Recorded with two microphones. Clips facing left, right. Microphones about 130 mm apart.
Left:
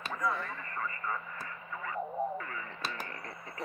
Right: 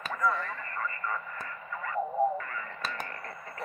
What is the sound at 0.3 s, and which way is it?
Radio, 50° right (ahead or behind).